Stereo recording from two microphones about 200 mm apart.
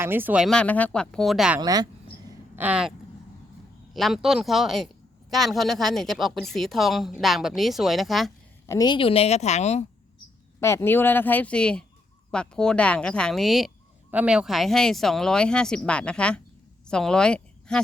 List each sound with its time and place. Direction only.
0.0 s a woman's voice: 10° right (ahead or behind)
1.6 s speech: 20° right (ahead or behind)
2.6 s a woman's voice: 5° right (ahead or behind)
3.9 s a woman's voice: centre (ahead or behind)
8.6 s a woman's voice: 15° left (ahead or behind); by 9.8 s 35° left (ahead or behind)
10.6 s a woman's voice: 15° left (ahead or behind)